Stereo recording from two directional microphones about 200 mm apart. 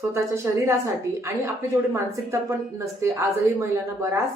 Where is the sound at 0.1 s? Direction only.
15° right (ahead or behind).